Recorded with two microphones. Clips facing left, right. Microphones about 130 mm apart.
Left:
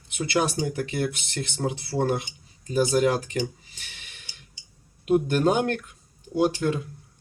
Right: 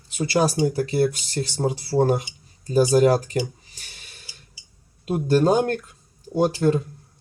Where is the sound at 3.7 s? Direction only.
40° right (ahead or behind).